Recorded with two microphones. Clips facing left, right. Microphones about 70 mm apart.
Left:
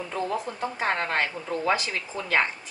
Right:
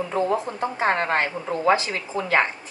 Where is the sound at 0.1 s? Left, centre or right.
Right.